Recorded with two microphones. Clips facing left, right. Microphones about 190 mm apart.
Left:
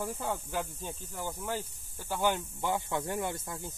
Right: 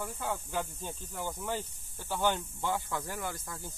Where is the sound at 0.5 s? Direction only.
10° left (ahead or behind).